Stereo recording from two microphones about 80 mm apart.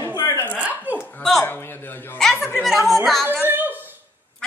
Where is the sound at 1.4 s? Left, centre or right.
Left.